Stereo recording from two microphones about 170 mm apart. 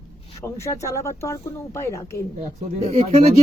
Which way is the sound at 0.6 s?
15° left (ahead or behind).